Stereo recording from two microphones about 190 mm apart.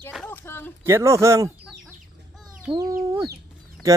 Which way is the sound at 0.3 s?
10° left (ahead or behind).